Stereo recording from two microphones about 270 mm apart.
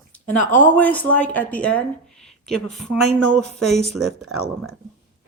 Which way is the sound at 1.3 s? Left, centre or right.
Centre.